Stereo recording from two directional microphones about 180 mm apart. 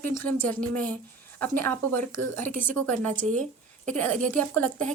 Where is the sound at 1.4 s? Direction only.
10° left (ahead or behind).